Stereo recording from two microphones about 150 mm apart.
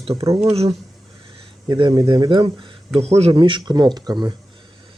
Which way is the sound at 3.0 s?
45° right (ahead or behind).